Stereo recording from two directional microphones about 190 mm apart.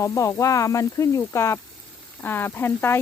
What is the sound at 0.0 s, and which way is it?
Speech, 15° left (ahead or behind).